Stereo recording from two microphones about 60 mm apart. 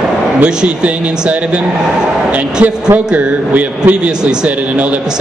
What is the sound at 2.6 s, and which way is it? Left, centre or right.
Speech, right.